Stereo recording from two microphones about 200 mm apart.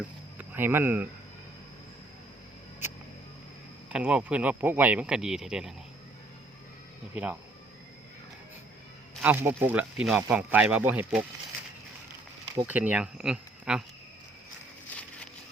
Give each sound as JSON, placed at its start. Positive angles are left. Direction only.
{"t": 0.3, "sound": "speech", "side_deg": -10}
{"t": 3.9, "sound": "speech", "side_deg": -5}
{"t": 9.2, "sound": "speech", "side_deg": -10}
{"t": 12.5, "sound": "speech", "side_deg": -10}